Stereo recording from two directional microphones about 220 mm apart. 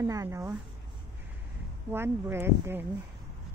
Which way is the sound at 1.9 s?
10° right (ahead or behind).